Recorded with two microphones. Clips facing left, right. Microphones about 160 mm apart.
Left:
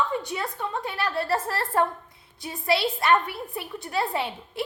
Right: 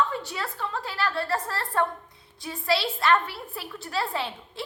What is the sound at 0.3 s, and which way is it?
A woman's voice, 20° left (ahead or behind).